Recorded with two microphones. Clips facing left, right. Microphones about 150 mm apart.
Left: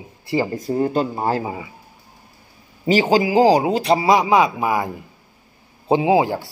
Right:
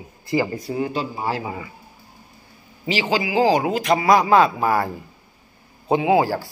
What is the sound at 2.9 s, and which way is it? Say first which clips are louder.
A man's voice: left 6 dB; 45° left (ahead or behind).